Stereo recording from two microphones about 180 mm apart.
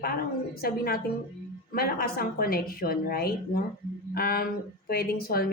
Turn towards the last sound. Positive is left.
turn(degrees=60)  # may be behind; listen again after turning